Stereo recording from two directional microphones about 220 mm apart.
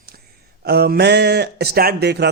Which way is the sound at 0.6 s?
50° right (ahead or behind).